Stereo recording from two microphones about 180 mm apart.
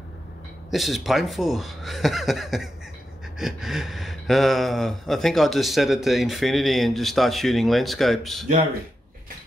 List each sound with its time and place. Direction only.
0.7 s speech: centre (ahead or behind)